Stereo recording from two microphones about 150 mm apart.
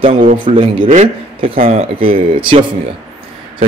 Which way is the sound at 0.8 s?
55° right (ahead or behind).